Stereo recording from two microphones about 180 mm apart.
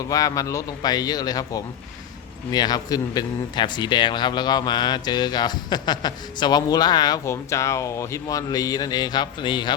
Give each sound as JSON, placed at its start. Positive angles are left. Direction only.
{"t": 0.1, "sound": "a man's voice", "side_deg": 20}